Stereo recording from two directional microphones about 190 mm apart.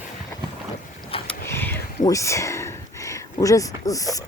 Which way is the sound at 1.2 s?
10° left (ahead or behind).